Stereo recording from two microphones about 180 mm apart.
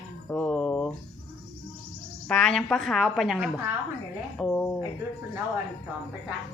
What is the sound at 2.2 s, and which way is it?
Speech, 5° left (ahead or behind).